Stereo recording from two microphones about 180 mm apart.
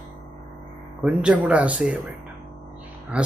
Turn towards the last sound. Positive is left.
turn(degrees=-5)  # may be behind; listen again after turning